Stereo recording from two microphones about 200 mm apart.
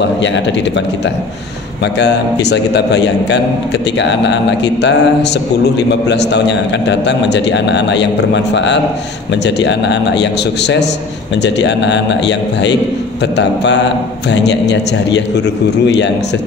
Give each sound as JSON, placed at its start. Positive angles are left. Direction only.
{"t": 2.4, "sound": "a man's voice", "side_deg": 60}